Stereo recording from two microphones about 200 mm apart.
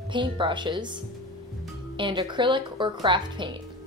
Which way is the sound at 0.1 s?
25° right (ahead or behind).